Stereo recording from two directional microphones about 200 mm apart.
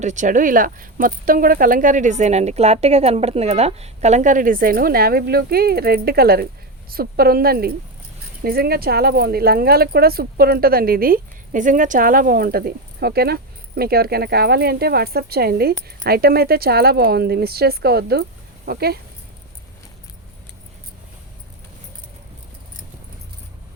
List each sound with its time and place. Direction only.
0.0 s speech: 35° right (ahead or behind)